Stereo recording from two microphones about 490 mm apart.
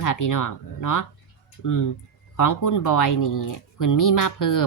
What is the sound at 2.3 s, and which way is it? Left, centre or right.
A woman's voice, left.